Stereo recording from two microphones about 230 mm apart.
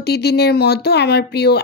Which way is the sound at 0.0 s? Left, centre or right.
Left.